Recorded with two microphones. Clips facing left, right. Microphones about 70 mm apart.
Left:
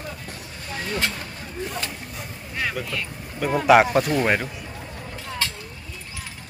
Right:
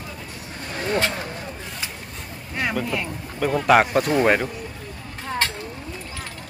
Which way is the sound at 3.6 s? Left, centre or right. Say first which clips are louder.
Left 2 dB; centre.